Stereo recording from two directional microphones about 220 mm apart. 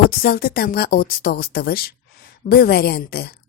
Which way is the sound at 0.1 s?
45° left (ahead or behind).